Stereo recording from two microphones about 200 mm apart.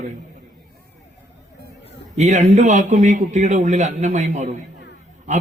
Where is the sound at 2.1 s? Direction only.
35° right (ahead or behind).